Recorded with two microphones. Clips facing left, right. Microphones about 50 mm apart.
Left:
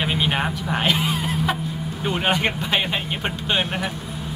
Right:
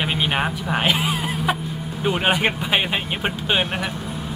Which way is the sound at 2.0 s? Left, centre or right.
Centre.